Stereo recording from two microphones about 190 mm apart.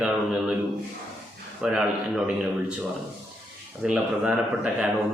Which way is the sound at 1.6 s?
5° right (ahead or behind).